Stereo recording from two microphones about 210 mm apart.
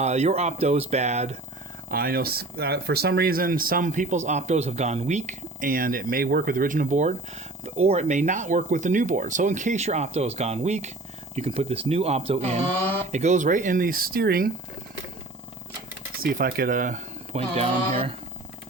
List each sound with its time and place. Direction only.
0.0 s speech: 30° right (ahead or behind)
1.9 s speech: 45° right (ahead or behind)
16.2 s speech: 45° right (ahead or behind); by 18.1 s 30° right (ahead or behind)